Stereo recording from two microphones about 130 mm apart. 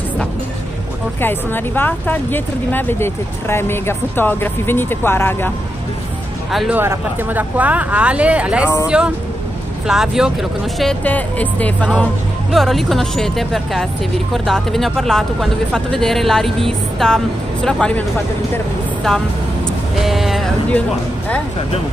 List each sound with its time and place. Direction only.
1.2 s speech: 15° left (ahead or behind)
6.7 s speech: 15° right (ahead or behind)
10.8 s speech: 10° left (ahead or behind)
20.0 s a sound: centre (ahead or behind)